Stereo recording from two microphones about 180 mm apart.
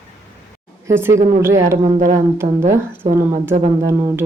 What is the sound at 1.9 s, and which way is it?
Speech, 40° right (ahead or behind).